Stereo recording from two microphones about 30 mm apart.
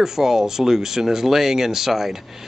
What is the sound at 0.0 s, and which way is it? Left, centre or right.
Speech, centre.